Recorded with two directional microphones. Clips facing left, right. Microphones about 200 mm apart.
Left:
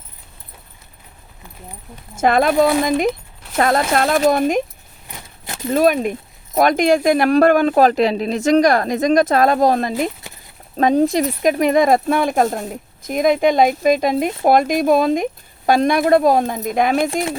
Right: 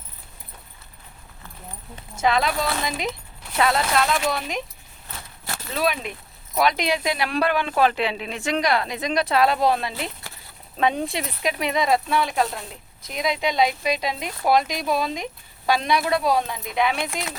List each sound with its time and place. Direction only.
2.1 s speech: 50° left (ahead or behind)
5.0 s keys jangling: 15° left (ahead or behind)
5.7 s speech: 45° left (ahead or behind)
10.3 s a sound: 20° left (ahead or behind)
10.8 s speech: 40° left (ahead or behind)